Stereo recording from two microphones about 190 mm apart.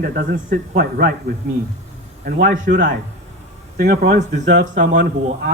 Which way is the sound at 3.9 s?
55° right (ahead or behind).